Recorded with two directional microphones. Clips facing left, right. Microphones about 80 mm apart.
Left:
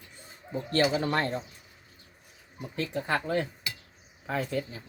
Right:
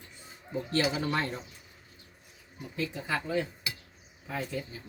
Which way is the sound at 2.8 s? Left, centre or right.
Left.